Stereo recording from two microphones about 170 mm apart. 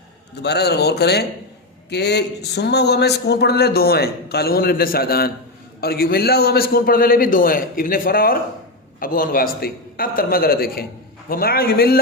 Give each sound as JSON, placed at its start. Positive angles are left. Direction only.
{"t": 0.3, "sound": "a man's voice", "side_deg": 75}